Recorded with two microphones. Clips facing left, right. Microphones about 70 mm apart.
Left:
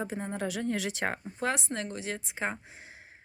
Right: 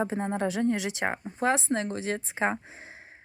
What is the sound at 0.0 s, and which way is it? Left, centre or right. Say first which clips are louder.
A woman's voice: right 6 dB; right.